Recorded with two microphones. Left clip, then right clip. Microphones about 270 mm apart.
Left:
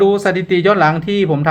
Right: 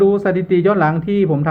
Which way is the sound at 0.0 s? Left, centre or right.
Centre.